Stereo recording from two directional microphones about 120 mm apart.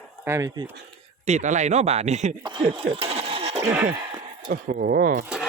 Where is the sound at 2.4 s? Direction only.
40° right (ahead or behind).